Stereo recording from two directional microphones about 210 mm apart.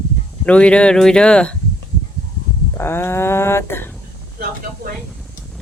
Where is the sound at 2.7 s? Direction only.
10° left (ahead or behind).